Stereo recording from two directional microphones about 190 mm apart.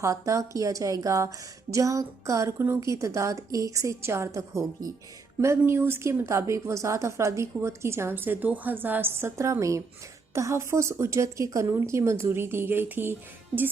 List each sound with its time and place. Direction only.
0.0 s speech: 15° right (ahead or behind)